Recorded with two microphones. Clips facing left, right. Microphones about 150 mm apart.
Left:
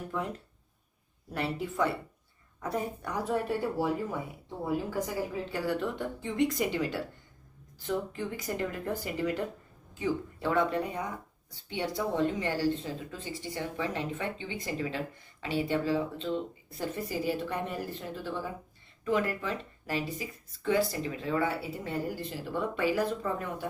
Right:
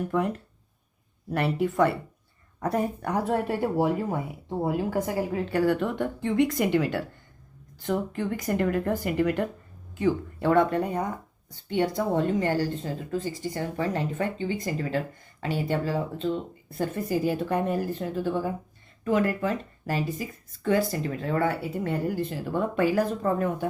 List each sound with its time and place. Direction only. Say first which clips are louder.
0.1 s speech: right 8 dB; 65° right (ahead or behind); by 23.6 s 45° right (ahead or behind)